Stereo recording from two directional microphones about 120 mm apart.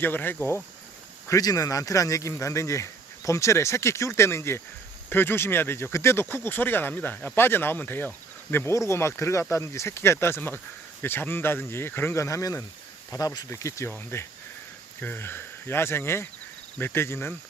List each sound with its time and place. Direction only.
0.0 s speech: 15° left (ahead or behind)
1.3 s speech: 30° left (ahead or behind)